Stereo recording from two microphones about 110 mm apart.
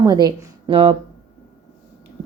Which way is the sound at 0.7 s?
60° right (ahead or behind).